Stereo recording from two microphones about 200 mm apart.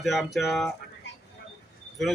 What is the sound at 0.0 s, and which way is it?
Speech, centre (ahead or behind).